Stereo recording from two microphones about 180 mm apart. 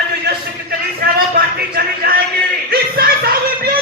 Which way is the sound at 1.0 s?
55° right (ahead or behind).